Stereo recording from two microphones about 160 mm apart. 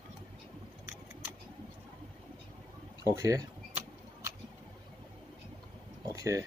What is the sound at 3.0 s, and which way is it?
Speech, 20° right (ahead or behind).